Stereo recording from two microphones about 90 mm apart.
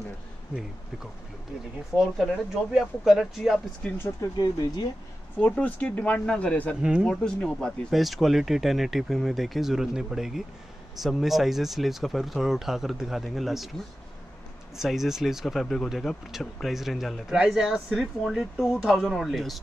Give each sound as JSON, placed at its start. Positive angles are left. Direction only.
{"t": 1.9, "sound": "speech", "side_deg": 0}
{"t": 3.8, "sound": "speech", "side_deg": 10}
{"t": 4.4, "sound": "speech", "side_deg": 45}
{"t": 5.4, "sound": "speech", "side_deg": 15}
{"t": 7.9, "sound": "speech", "side_deg": 0}
{"t": 14.8, "sound": "speech", "side_deg": -5}